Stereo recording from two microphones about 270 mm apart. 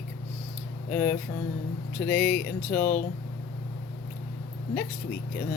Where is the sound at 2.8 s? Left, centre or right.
Left.